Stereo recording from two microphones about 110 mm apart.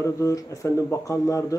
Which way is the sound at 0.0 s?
30° left (ahead or behind).